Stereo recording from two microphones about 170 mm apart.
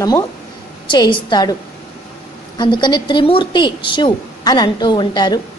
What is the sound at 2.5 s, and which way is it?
A woman's voice, 25° left (ahead or behind).